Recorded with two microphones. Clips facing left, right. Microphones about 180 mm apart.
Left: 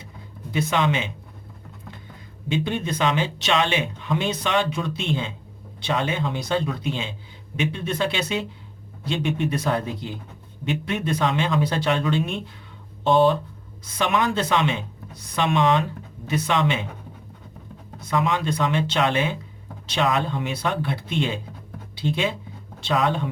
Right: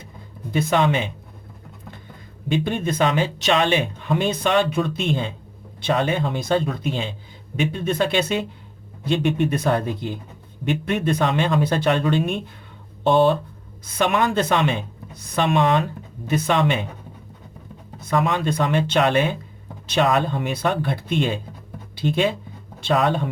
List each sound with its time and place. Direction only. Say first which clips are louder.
0.7 s speech: right 4 dB; 45° right (ahead or behind)
2.5 s speech: right 3 dB; 50° right (ahead or behind)
18.1 s speech: right 2 dB; 55° right (ahead or behind)